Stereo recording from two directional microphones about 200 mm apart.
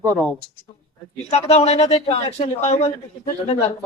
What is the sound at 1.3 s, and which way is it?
Speech, 30° left (ahead or behind).